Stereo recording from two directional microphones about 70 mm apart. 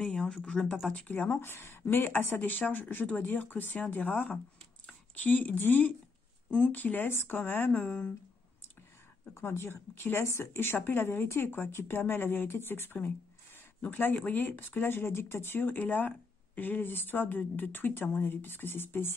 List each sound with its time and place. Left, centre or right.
0.0 s speech: centre; by 3.8 s left
4.8 s speech: left
9.3 s speech: left